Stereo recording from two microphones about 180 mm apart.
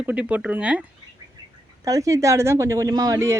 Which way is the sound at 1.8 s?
20° right (ahead or behind).